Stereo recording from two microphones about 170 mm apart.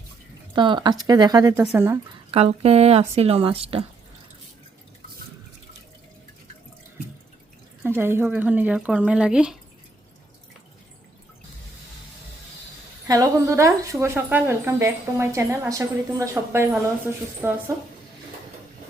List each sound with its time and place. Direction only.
0.5 s speech: 30° right (ahead or behind)
2.3 s speech: 35° right (ahead or behind)
7.9 s a woman's voice: 15° right (ahead or behind)
13.1 s a woman's voice: 20° right (ahead or behind)